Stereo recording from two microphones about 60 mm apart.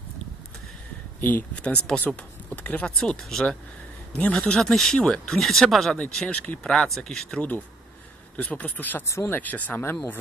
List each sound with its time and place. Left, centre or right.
1.2 s speech: left
1.6 s speech: centre
3.0 s speech: centre
5.9 s speech: centre
6.6 s speech: centre
7.3 s speech: left